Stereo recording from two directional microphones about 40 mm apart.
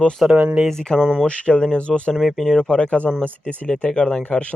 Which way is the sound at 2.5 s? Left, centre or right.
Left.